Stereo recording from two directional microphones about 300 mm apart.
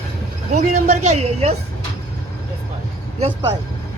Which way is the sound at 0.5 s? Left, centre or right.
Right.